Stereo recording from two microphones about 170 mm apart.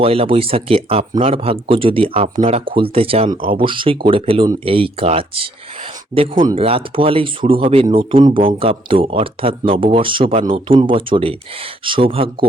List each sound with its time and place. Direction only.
0.0 s speech: 35° right (ahead or behind)